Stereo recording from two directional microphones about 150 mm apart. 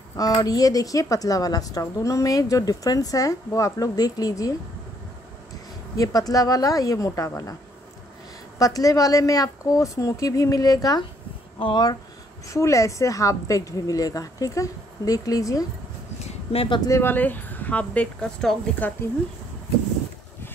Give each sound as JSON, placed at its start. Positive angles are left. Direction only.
{"t": 0.2, "sound": "speech", "side_deg": 25}
{"t": 5.9, "sound": "speech", "side_deg": 25}
{"t": 8.5, "sound": "speech", "side_deg": 25}
{"t": 16.3, "sound": "a sound", "side_deg": 35}
{"t": 16.9, "sound": "speech", "side_deg": 15}